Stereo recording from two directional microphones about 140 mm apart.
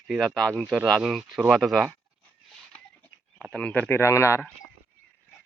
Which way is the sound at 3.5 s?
10° left (ahead or behind).